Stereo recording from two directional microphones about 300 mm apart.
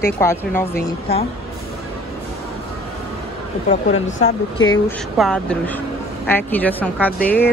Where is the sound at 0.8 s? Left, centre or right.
Centre.